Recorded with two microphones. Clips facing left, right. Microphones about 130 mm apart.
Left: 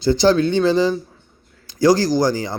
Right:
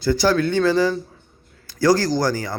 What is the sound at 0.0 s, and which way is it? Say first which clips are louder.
A man's voice: left 3 dB; 20° left (ahead or behind).